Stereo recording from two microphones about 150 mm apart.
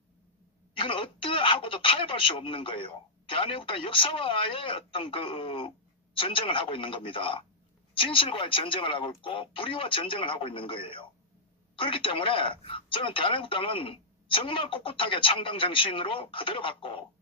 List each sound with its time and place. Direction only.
0.7 s speech: 35° left (ahead or behind)